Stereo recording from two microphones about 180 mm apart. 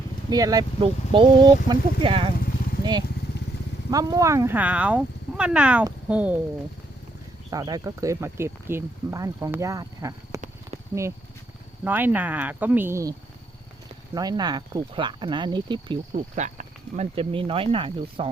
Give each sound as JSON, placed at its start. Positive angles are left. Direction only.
{"t": 0.3, "sound": "speech", "side_deg": -20}
{"t": 3.9, "sound": "speech", "side_deg": -20}
{"t": 7.5, "sound": "speech", "side_deg": -20}
{"t": 11.9, "sound": "speech", "side_deg": -10}
{"t": 16.1, "sound": "speech", "side_deg": -40}